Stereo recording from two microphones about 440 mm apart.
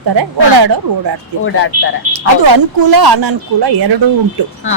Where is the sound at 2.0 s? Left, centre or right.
Right.